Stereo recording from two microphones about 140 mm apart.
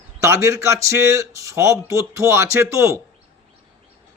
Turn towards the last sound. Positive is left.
turn(degrees=-20)  # may be behind; listen again after turning